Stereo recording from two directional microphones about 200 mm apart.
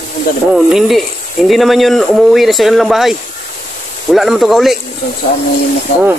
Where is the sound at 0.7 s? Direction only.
Centre (ahead or behind).